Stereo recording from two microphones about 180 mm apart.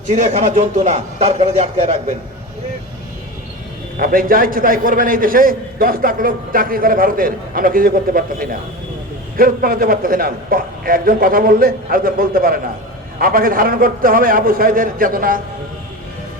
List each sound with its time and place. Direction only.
0.1 s speech: 40° right (ahead or behind)
3.9 s a man's voice: 50° right (ahead or behind)